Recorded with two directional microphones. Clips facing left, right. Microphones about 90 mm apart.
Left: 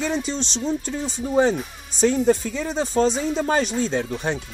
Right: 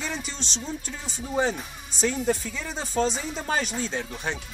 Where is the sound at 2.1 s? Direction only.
35° left (ahead or behind).